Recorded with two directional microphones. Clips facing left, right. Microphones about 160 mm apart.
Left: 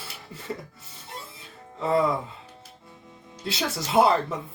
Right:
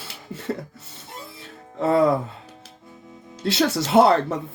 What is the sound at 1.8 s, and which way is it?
Music, 70° right (ahead or behind).